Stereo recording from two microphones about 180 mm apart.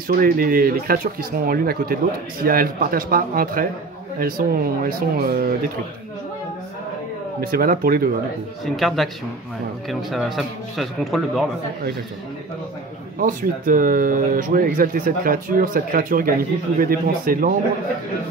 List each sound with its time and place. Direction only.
0.1 s speech: 55° right (ahead or behind)
7.3 s speech: 55° right (ahead or behind)
8.7 s speech: centre (ahead or behind)
13.2 s speech: 50° right (ahead or behind)